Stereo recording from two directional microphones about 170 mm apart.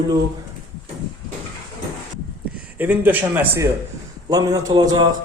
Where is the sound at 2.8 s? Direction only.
10° right (ahead or behind).